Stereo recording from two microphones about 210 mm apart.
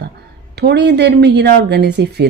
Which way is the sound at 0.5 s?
50° right (ahead or behind).